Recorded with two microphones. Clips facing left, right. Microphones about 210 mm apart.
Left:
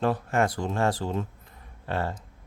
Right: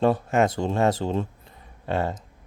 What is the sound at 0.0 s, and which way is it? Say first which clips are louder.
Speech: right 4 dB; 25° right (ahead or behind).